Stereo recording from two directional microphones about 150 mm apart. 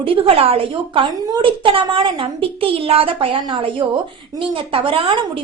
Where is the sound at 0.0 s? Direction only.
35° right (ahead or behind).